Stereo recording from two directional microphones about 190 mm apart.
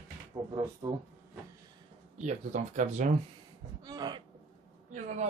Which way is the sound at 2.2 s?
40° right (ahead or behind).